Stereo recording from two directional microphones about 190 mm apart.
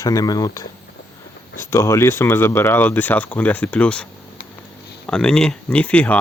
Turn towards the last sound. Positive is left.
turn(degrees=5)  # may be behind; listen again after turning